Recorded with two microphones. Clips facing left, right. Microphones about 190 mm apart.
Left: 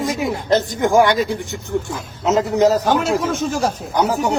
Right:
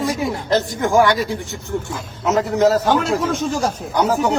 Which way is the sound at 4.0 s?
15° left (ahead or behind).